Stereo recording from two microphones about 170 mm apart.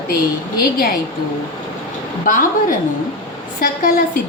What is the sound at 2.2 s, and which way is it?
Speech, 55° left (ahead or behind).